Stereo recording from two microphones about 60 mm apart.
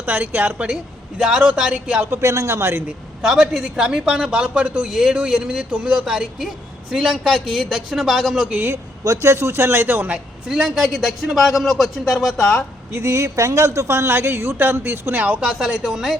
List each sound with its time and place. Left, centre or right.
0.0 s a woman's voice: right
1.2 s a man's voice: centre
2.0 s a man's voice: right
3.2 s a man's voice: centre
4.9 s a man's voice: centre
6.1 s a man's voice: centre
9.0 s a man's voice: right
10.5 s a man's voice: centre
12.9 s a man's voice: right
15.2 s a man's voice: right